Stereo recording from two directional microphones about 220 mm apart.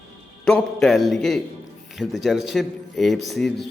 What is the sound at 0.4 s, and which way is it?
A man's voice, centre (ahead or behind).